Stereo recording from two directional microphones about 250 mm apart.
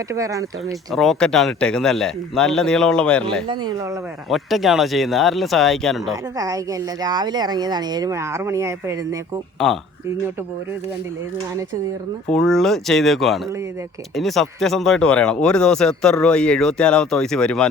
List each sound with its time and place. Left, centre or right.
0.1 s speech: centre
0.9 s speech: centre
3.5 s speech: centre
4.3 s speech: centre
7.0 s speech: centre
9.6 s speech: centre
12.3 s speech: centre